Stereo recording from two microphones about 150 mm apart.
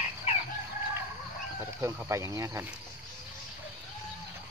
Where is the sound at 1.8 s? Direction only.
15° right (ahead or behind).